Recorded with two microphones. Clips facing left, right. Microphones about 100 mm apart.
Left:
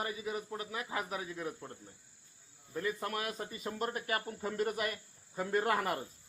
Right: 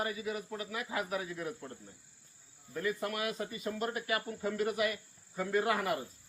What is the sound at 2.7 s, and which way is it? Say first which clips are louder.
Speech: right 1 dB; 30° left (ahead or behind).